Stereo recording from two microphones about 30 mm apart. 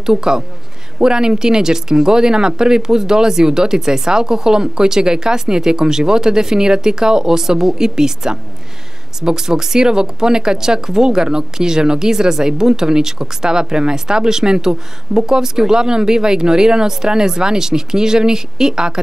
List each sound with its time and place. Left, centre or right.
0.0 s speech: right